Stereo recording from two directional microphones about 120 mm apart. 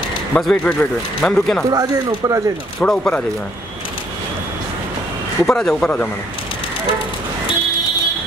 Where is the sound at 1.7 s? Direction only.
30° right (ahead or behind).